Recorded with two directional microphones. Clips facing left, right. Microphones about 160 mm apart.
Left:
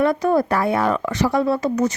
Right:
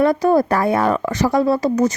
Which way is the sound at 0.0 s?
35° right (ahead or behind).